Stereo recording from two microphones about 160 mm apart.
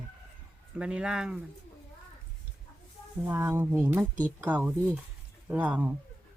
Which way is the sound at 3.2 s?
15° right (ahead or behind).